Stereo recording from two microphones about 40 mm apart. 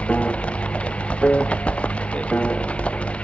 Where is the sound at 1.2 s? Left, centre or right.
Left.